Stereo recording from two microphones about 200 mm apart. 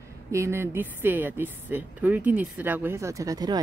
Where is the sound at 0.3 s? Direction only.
15° right (ahead or behind).